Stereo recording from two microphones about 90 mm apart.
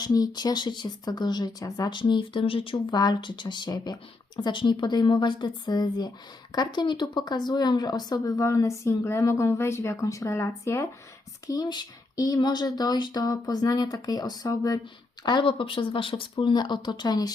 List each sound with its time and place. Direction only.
0.0 s speech: 45° left (ahead or behind)
1.9 s speech: 60° left (ahead or behind); by 2.7 s 85° left
2.7 s a woman's voice: 50° left (ahead or behind); by 10.8 s 30° left (ahead or behind)
11.4 s speech: 45° left (ahead or behind)
12.4 s speech: 50° left (ahead or behind)
15.2 s speech: 60° left (ahead or behind)